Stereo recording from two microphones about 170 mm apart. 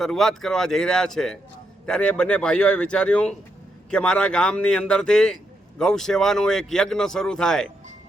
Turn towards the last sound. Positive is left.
turn(degrees=5)  # may be behind; listen again after turning